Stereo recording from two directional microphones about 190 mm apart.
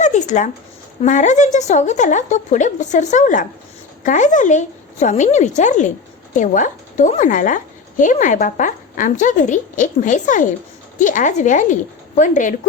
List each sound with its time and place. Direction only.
0.0 s a woman's voice: 40° left (ahead or behind)